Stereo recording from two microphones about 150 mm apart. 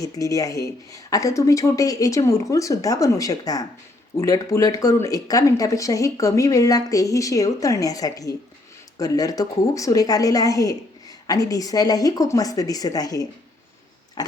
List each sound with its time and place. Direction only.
0.0 s speech: 20° left (ahead or behind)
14.2 s pig: 25° left (ahead or behind)